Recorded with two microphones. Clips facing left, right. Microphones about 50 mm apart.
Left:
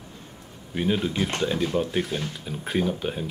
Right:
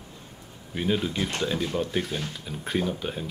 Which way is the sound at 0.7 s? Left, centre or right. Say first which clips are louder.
Left 2 dB; centre.